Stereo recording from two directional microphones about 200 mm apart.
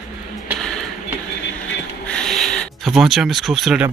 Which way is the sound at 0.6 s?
5° left (ahead or behind).